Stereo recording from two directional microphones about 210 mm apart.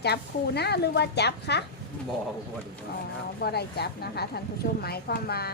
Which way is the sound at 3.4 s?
50° left (ahead or behind).